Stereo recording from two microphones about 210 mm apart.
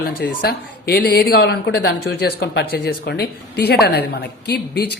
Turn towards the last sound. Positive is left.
turn(degrees=50)  # may be behind; listen again after turning